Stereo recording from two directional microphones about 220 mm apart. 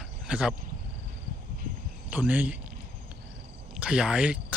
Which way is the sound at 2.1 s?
5° right (ahead or behind).